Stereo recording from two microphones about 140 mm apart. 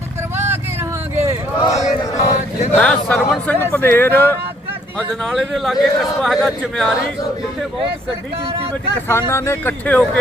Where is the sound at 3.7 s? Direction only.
15° left (ahead or behind).